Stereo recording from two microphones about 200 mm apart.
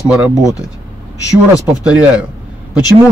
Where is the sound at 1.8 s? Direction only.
5° right (ahead or behind).